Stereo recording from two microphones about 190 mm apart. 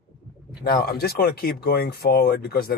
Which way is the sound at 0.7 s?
55° left (ahead or behind).